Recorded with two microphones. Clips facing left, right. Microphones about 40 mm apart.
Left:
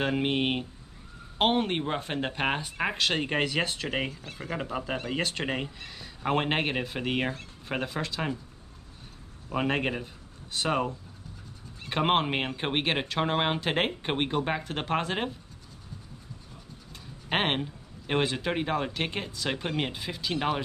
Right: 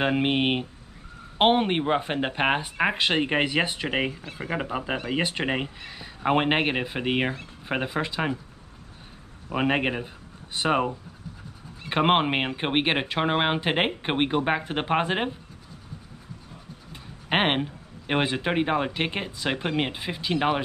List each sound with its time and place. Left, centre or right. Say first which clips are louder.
0.0 s speech: right 4 dB; right
9.5 s speech: right 4 dB; right
16.9 s speech: right 4 dB; right